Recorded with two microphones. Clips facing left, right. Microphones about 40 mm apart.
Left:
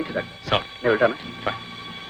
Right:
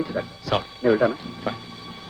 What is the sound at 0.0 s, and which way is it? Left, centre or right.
Music, left.